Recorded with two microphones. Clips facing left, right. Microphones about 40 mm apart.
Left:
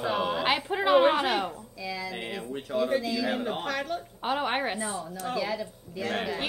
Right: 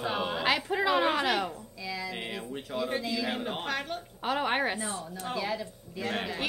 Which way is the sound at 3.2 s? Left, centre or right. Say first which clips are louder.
Left 3 dB; centre.